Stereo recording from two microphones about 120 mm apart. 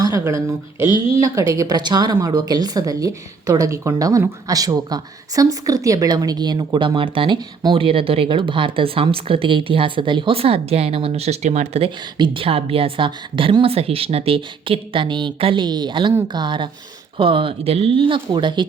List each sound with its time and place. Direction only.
0.0 s speech: 25° right (ahead or behind)
0.8 s speech: 45° left (ahead or behind)
1.2 s a woman's voice: 25° right (ahead or behind); by 11.9 s 65° right (ahead or behind)
12.1 s a woman's voice: 45° right (ahead or behind)